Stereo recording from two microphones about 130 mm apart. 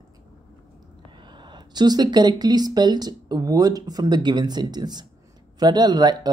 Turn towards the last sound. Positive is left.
turn(degrees=-35)  # may be behind; listen again after turning